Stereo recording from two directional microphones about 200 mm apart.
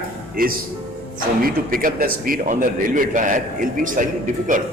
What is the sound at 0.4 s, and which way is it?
A man's voice, 45° right (ahead or behind).